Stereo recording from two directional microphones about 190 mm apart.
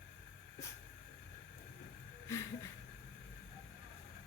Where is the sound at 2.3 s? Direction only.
15° left (ahead or behind).